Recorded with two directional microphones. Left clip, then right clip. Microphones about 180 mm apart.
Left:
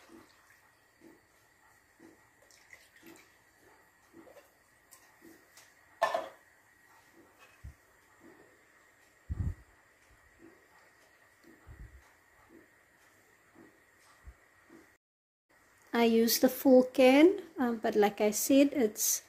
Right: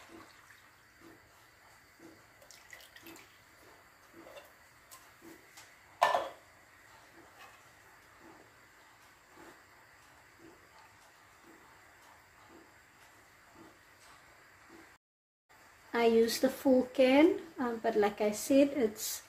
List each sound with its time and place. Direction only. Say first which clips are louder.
15.9 s a woman's voice: even; 70° left (ahead or behind)